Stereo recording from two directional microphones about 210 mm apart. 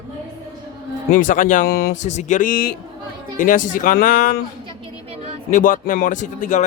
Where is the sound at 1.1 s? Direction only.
40° left (ahead or behind).